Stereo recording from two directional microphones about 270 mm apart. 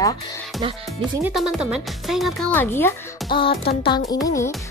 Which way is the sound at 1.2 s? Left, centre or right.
Centre.